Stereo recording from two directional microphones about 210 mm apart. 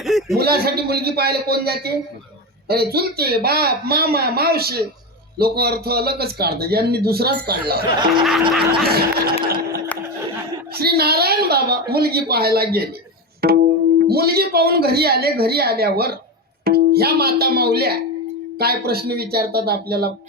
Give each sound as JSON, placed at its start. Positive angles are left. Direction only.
{"t": 0.0, "sound": "a sound", "side_deg": 0}
{"t": 0.3, "sound": "speech", "side_deg": -50}
{"t": 7.9, "sound": "music", "side_deg": -20}
{"t": 8.7, "sound": "speech", "side_deg": -50}
{"t": 9.5, "sound": "a sound", "side_deg": -45}
{"t": 10.8, "sound": "speech", "side_deg": -50}